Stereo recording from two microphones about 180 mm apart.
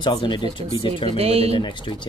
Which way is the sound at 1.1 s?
35° right (ahead or behind).